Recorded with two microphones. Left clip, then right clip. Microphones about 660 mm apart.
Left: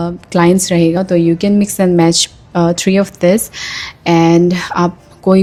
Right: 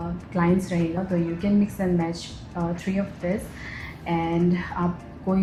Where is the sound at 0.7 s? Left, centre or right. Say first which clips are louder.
Left 15 dB; left.